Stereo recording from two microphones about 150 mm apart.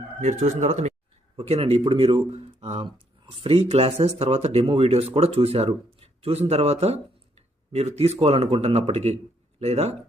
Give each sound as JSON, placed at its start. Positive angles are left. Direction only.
{"t": 0.2, "sound": "speech", "side_deg": -50}